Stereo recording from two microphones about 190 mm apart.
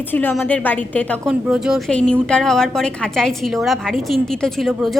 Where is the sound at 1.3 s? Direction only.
5° right (ahead or behind).